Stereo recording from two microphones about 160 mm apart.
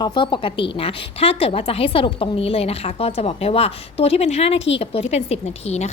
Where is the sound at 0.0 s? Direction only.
30° left (ahead or behind).